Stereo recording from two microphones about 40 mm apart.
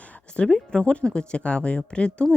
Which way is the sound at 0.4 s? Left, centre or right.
Left.